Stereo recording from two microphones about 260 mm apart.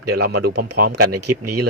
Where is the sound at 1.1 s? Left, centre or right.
Right.